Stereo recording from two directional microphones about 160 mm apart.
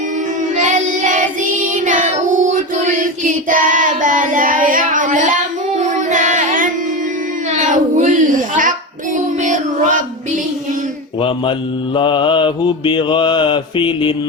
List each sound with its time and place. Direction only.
0.5 s child singing: 50° right (ahead or behind)
7.5 s a sound: 50° right (ahead or behind)
9.1 s music: 50° right (ahead or behind)
11.9 s mantra: 30° left (ahead or behind)